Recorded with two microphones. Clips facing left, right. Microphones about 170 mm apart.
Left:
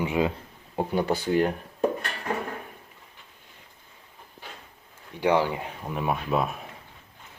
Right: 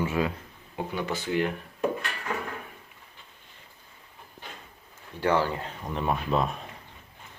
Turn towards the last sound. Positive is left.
turn(degrees=5)  # may be behind; listen again after turning